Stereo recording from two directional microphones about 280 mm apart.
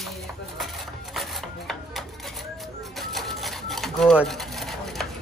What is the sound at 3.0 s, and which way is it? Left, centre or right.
Sewing machine, centre.